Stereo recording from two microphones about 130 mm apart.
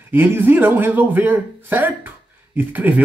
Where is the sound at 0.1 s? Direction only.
15° right (ahead or behind).